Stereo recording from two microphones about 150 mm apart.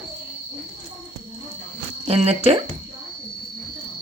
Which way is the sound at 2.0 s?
45° right (ahead or behind).